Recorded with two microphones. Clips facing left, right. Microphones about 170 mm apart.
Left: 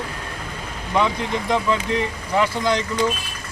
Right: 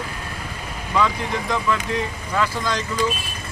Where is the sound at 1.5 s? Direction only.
20° left (ahead or behind).